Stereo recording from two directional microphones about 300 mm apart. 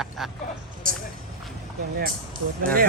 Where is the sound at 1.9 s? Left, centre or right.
Right.